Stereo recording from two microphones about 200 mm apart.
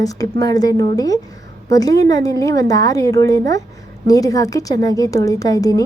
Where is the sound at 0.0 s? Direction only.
15° left (ahead or behind).